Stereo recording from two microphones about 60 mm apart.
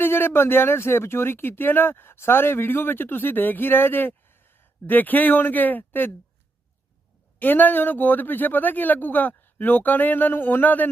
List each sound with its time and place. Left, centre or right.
0.0 s speech: left
7.3 s speech: left